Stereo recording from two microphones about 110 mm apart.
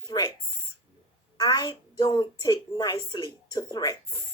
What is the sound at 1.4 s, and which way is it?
Speech, 35° left (ahead or behind).